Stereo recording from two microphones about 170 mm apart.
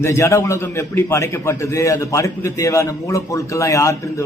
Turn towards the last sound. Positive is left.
turn(degrees=20)  # may be behind; listen again after turning